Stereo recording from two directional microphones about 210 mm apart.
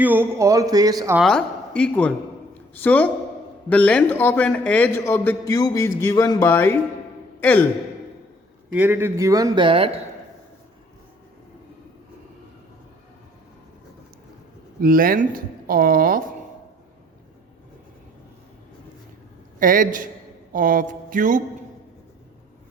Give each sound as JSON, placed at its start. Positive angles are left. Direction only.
{"t": 0.0, "sound": "speech", "side_deg": -10}
{"t": 1.2, "sound": "a woman's voice", "side_deg": 5}
{"t": 8.7, "sound": "speech", "side_deg": -10}
{"t": 14.8, "sound": "speech", "side_deg": -40}
{"t": 19.5, "sound": "a man's voice", "side_deg": -40}
{"t": 20.5, "sound": "a sound", "side_deg": -40}